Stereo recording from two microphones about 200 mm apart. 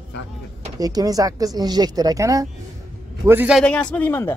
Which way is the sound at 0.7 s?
20° right (ahead or behind).